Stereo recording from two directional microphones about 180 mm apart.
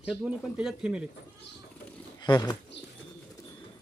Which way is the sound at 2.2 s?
25° left (ahead or behind).